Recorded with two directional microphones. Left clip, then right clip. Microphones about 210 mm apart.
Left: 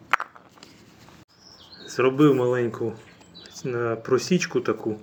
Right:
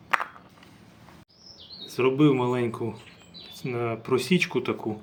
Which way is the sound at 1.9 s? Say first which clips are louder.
Left 3 dB; 20° right (ahead or behind).